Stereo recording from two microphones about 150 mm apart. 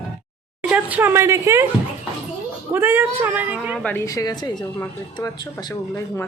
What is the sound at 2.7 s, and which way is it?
Speech, 15° right (ahead or behind).